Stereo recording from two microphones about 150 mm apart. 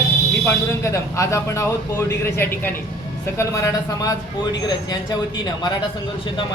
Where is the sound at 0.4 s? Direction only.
20° left (ahead or behind).